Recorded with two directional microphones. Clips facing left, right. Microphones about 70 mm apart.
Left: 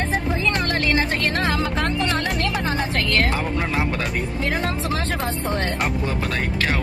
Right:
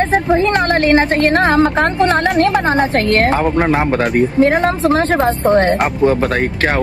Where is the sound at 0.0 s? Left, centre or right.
Right.